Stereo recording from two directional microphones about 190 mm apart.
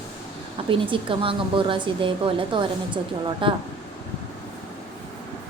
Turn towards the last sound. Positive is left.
turn(degrees=-25)  # may be behind; listen again after turning